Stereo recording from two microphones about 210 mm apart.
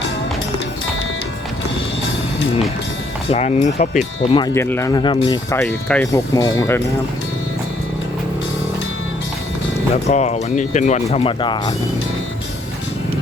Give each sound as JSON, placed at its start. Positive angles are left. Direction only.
{"t": 3.2, "sound": "speech", "side_deg": 30}
{"t": 4.5, "sound": "speech", "side_deg": 10}
{"t": 9.9, "sound": "speech", "side_deg": 30}